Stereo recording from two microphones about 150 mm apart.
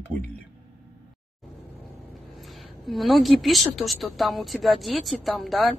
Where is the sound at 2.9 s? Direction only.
Centre (ahead or behind).